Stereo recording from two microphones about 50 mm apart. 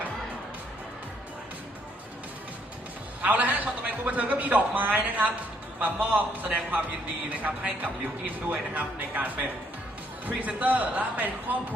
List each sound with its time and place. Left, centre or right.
3.2 s a man's voice: right